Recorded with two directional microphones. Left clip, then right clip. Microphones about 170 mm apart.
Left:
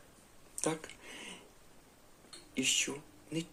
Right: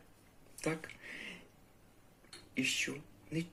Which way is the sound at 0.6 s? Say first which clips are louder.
Left 2 dB; 15° left (ahead or behind).